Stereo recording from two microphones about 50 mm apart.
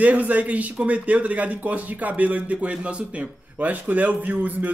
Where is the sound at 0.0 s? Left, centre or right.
Right.